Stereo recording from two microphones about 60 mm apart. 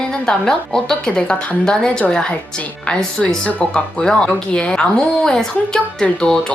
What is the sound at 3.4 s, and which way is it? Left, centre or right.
A woman's voice, centre.